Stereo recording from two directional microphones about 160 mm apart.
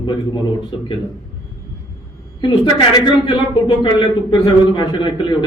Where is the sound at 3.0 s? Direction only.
30° left (ahead or behind).